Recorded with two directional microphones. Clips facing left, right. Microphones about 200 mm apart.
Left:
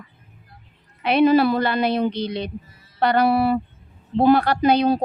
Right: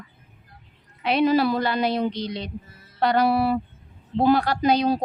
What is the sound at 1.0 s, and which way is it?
A woman's voice, 60° left (ahead or behind).